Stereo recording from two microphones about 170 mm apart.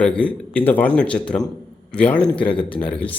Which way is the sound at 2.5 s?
30° left (ahead or behind).